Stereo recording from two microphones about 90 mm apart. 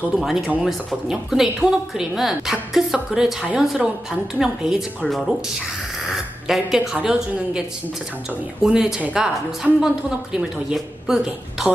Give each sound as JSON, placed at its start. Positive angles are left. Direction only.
{"t": 0.2, "sound": "speech", "side_deg": -5}
{"t": 6.4, "sound": "a woman's voice", "side_deg": -5}
{"t": 8.6, "sound": "a woman's voice", "side_deg": -5}